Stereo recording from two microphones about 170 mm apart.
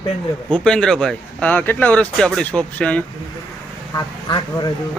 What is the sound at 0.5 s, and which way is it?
A man's voice, 5° left (ahead or behind).